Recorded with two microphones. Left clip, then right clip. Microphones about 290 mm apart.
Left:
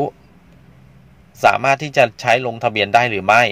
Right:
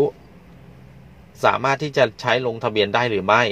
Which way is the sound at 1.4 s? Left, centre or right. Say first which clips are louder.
Left 4 dB; left.